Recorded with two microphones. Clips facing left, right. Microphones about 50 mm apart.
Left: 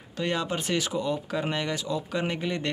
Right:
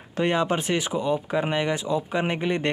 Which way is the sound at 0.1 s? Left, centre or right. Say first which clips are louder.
Right 6 dB; right.